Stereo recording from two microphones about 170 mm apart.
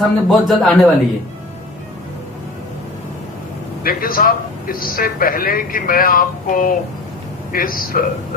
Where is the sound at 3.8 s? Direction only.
55° left (ahead or behind).